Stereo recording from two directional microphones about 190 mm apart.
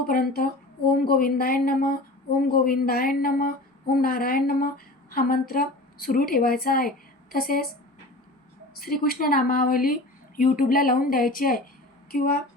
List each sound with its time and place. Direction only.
0.1 s speech: 50° left (ahead or behind)
8.8 s speech: 50° left (ahead or behind)